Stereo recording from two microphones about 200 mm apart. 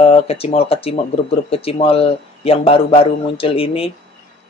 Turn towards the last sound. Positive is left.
turn(degrees=30)  # may be behind; listen again after turning